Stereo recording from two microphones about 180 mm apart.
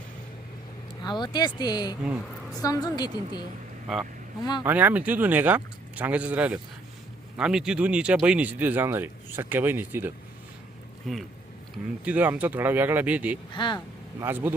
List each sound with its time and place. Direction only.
1.0 s speech: 25° left (ahead or behind)
3.9 s speech: centre (ahead or behind)
11.1 s speech: centre (ahead or behind)
13.5 s speech: 25° left (ahead or behind)
14.2 s speech: 10° right (ahead or behind)